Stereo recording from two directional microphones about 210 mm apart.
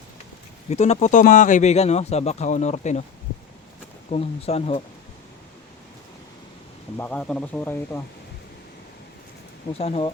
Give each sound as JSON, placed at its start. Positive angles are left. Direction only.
{"t": 0.7, "sound": "speech", "side_deg": 30}
{"t": 4.1, "sound": "speech", "side_deg": 30}
{"t": 6.9, "sound": "speech", "side_deg": 10}
{"t": 9.7, "sound": "speech", "side_deg": 30}